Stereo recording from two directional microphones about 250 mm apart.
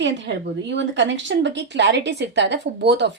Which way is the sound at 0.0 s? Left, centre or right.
Right.